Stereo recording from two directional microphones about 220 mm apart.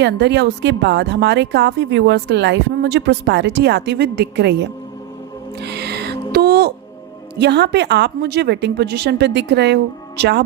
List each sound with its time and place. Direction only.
0.0 s speech: 50° right (ahead or behind)
5.5 s music: 50° right (ahead or behind)
6.3 s speech: 45° right (ahead or behind)